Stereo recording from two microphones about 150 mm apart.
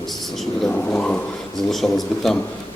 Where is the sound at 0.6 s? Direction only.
5° left (ahead or behind).